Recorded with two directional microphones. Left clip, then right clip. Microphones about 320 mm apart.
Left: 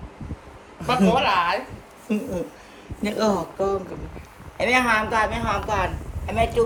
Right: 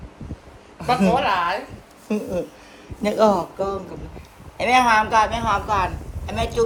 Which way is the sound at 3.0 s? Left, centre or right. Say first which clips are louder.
Right 5 dB; centre.